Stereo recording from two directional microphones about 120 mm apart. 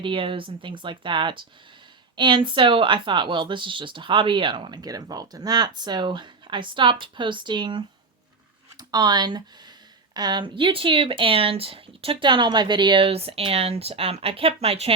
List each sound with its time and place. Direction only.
0.0 s speech: 45° right (ahead or behind)